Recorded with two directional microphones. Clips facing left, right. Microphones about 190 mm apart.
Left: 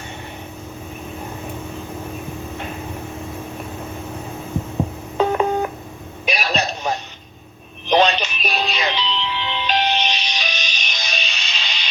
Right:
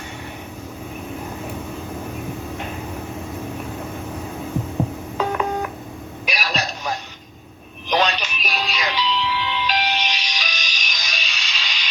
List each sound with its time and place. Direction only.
5.1 s telephone dialing: 25° left (ahead or behind)
6.2 s radio: 25° left (ahead or behind)
7.9 s music: 25° left (ahead or behind)